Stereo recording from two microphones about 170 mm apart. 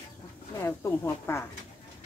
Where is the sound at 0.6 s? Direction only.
15° left (ahead or behind).